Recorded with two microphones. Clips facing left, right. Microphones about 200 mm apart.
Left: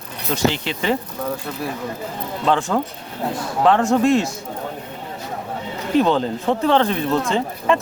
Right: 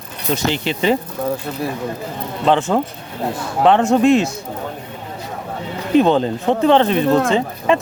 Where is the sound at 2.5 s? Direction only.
20° right (ahead or behind).